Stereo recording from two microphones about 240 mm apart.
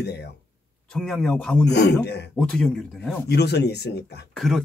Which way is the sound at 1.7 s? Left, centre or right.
Left.